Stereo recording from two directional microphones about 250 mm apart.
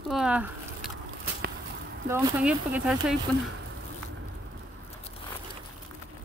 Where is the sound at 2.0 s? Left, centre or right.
Centre.